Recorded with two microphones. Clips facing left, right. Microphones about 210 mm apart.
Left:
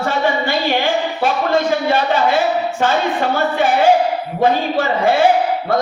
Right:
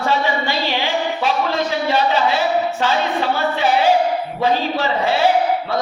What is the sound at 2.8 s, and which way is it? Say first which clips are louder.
Speech: left 2 dB; 50° left (ahead or behind).